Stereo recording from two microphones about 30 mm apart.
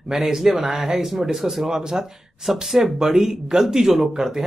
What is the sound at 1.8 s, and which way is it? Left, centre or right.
Speech, right.